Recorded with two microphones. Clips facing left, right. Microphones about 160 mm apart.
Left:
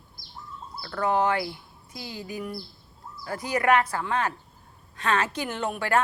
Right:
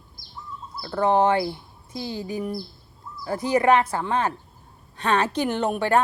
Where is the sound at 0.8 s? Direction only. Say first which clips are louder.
Right 5 dB; 25° right (ahead or behind).